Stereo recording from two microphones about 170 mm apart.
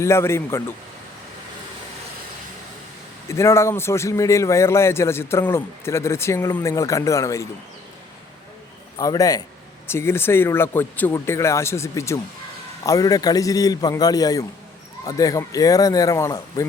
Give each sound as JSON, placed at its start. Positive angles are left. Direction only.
{"t": 0.0, "sound": "a man's voice", "side_deg": 15}
{"t": 3.2, "sound": "a man's voice", "side_deg": 15}
{"t": 9.0, "sound": "a man's voice", "side_deg": 20}